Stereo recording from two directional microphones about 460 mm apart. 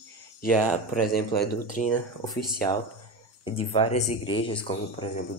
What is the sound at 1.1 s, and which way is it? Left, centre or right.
Speech, centre.